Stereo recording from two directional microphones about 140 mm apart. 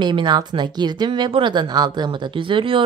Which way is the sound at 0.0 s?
30° right (ahead or behind).